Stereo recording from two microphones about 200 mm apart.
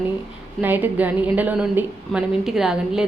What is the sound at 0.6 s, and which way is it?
A woman's voice, 10° right (ahead or behind).